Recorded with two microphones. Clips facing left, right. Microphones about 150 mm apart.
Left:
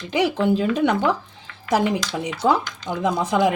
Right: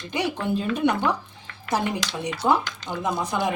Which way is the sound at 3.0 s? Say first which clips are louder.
Left 6 dB; 90° left.